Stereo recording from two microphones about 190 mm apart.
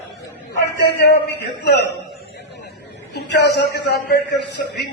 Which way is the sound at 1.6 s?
60° left (ahead or behind).